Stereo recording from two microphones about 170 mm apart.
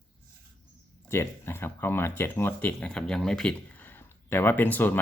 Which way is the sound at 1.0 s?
15° left (ahead or behind).